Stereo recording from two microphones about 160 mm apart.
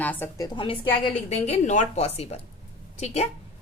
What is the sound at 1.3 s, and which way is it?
A woman's voice, 45° left (ahead or behind).